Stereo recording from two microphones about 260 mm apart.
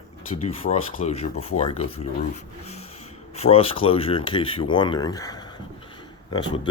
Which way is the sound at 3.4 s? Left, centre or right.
Left.